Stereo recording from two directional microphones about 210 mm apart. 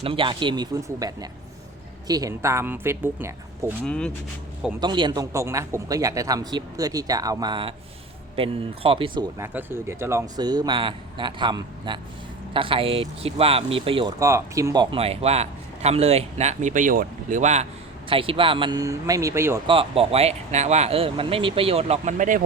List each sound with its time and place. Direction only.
0.0 s a man's voice: 25° right (ahead or behind)
3.8 s speech: 5° left (ahead or behind)
4.8 s a man's voice: 20° right (ahead or behind)
9.4 s a man's voice: 10° right (ahead or behind); by 14.1 s 25° right (ahead or behind)
14.2 s a man's voice: 15° right (ahead or behind)
19.6 s a man's voice: 25° right (ahead or behind)